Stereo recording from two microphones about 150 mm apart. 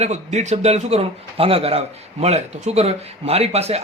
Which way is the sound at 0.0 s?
50° right (ahead or behind).